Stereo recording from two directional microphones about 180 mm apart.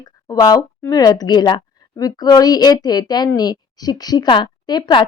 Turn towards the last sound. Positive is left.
turn(degrees=25)  # may be behind; listen again after turning